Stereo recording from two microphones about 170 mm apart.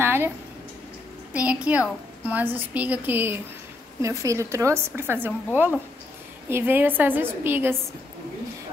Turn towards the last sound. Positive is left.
turn(degrees=-15)  # may be behind; listen again after turning